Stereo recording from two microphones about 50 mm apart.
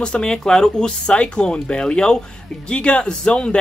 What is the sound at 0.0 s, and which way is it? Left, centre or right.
Speech, centre.